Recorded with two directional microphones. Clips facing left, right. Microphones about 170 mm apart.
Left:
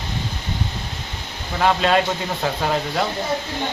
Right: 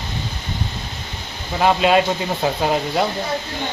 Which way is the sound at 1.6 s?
10° right (ahead or behind).